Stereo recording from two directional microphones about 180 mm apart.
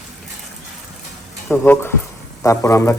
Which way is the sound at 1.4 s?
10° left (ahead or behind).